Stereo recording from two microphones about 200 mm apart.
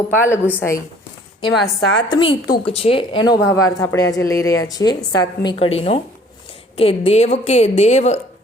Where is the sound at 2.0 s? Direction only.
25° left (ahead or behind).